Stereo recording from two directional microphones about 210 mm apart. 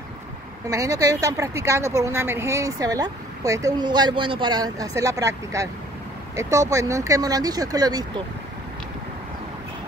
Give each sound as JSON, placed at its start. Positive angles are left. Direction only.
{"t": 0.7, "sound": "a woman's voice", "side_deg": -15}